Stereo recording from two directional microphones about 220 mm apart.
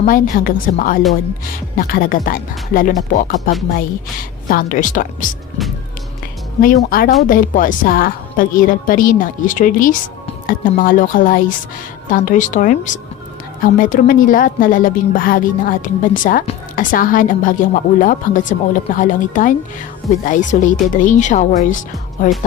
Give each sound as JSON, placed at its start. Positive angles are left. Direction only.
{"t": 0.0, "sound": "a woman's voice", "side_deg": 40}
{"t": 6.6, "sound": "a woman's voice", "side_deg": 40}